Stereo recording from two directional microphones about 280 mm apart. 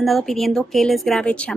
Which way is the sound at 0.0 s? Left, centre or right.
Centre.